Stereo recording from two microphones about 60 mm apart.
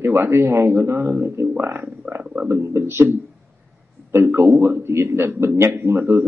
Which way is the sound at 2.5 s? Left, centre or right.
Right.